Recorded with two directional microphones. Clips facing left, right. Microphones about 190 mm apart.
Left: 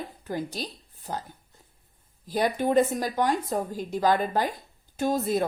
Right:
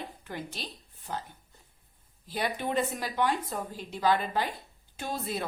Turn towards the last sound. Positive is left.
turn(degrees=45)  # may be behind; listen again after turning